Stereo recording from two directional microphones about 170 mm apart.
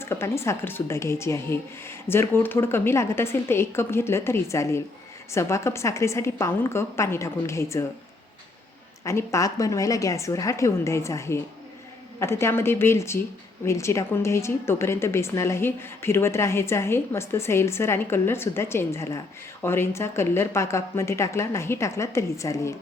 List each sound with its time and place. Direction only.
0.0 s a woman's voice: 15° left (ahead or behind)
9.0 s a woman's voice: 15° left (ahead or behind)